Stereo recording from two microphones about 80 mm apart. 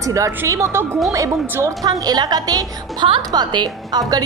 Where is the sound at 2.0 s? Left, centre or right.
Right.